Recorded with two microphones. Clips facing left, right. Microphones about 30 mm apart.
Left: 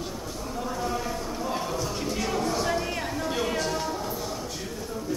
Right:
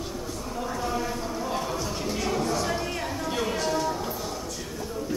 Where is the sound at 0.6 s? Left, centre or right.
Centre.